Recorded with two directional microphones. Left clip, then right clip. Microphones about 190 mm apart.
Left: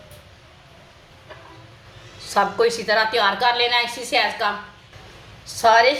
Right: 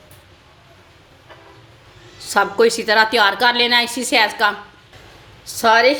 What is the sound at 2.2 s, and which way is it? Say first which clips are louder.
A woman's voice: right 4 dB; 55° right (ahead or behind).